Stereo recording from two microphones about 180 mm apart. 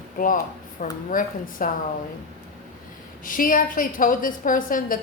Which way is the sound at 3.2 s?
50° left (ahead or behind).